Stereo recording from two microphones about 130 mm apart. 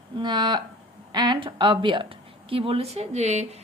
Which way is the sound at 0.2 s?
35° right (ahead or behind).